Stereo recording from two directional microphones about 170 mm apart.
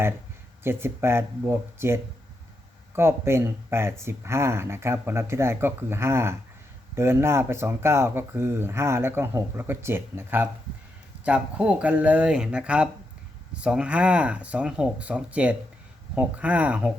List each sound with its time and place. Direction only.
0.6 s speech: 15° right (ahead or behind)